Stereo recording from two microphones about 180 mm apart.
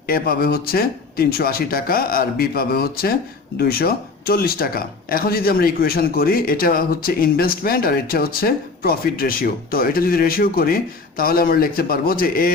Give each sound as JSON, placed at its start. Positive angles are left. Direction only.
{"t": 0.1, "sound": "speech", "side_deg": 55}